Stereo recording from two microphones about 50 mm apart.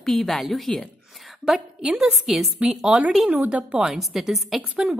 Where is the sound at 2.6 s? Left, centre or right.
Centre.